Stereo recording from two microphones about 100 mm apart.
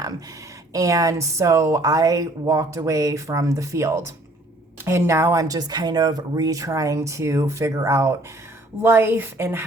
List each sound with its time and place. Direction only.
0.7 s a woman's voice: 35° right (ahead or behind)